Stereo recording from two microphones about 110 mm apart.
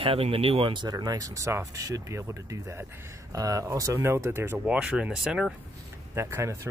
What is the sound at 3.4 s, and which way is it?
Speech, 30° right (ahead or behind).